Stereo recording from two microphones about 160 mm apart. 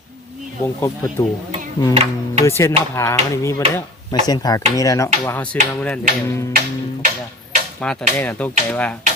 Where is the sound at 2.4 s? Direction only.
15° left (ahead or behind).